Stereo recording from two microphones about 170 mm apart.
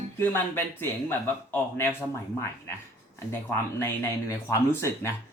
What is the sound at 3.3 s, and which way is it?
Speech, 15° left (ahead or behind).